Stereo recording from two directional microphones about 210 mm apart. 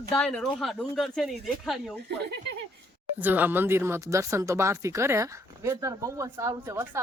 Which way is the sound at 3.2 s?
10° right (ahead or behind).